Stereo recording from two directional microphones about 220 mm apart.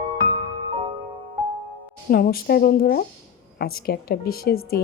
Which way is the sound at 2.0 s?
40° left (ahead or behind).